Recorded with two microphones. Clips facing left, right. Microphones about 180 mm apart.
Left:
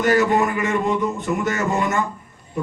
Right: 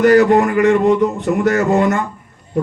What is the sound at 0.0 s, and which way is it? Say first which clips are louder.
A man's voice: right 7 dB; 65° right (ahead or behind).